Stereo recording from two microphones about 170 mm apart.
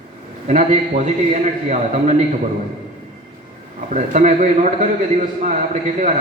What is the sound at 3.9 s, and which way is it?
Speech, 45° right (ahead or behind).